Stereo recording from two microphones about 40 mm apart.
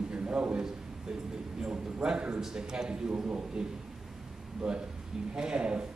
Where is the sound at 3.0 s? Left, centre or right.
Right.